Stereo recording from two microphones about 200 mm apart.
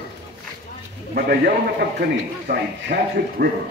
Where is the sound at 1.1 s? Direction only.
50° right (ahead or behind).